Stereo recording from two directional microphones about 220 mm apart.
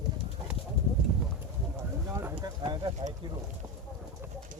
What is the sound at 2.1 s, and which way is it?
Clip-clop, 15° right (ahead or behind).